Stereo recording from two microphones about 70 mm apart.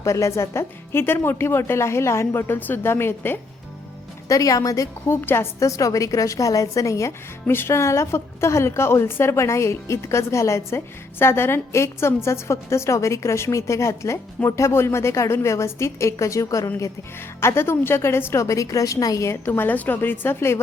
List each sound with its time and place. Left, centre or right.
0.0 s a woman's voice: left
4.3 s a woman's voice: left
5.0 s a woman's voice: left
5.5 s a woman's voice: left
7.4 s a woman's voice: left
17.2 s a woman's voice: left
18.4 s a woman's voice: left
19.5 s a woman's voice: left